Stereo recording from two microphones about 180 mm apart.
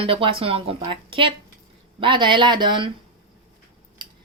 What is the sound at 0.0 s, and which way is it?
Speech, 30° right (ahead or behind).